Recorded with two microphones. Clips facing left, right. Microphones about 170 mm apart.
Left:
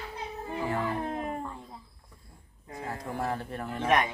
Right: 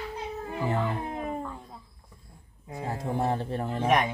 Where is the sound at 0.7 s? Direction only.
15° right (ahead or behind).